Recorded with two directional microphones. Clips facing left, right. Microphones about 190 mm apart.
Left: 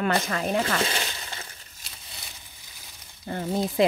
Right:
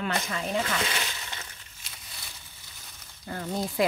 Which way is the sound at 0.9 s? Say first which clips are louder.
Left 2 dB; 35° left (ahead or behind).